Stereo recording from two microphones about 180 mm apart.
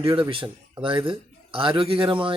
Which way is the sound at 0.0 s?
30° right (ahead or behind).